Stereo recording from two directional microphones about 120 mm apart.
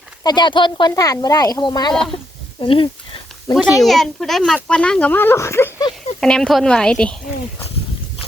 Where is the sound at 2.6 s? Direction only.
45° left (ahead or behind).